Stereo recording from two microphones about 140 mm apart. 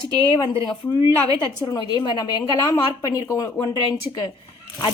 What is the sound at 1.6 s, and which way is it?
A woman's voice, 35° left (ahead or behind).